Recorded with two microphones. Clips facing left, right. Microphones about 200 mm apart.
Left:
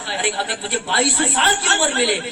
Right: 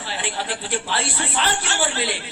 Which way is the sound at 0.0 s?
65° left (ahead or behind).